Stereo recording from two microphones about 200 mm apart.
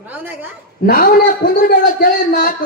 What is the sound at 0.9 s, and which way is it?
Speech, 40° left (ahead or behind).